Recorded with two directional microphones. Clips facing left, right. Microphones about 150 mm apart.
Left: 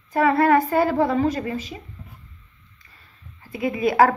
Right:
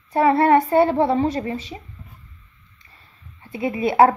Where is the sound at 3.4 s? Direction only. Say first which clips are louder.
Even; 25° right (ahead or behind).